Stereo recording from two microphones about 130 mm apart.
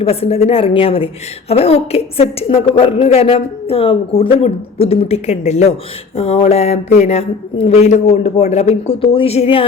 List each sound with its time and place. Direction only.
0.0 s a woman's voice: 50° left (ahead or behind)